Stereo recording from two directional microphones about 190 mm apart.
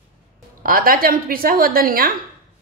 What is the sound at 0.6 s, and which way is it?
A woman's voice, 50° right (ahead or behind).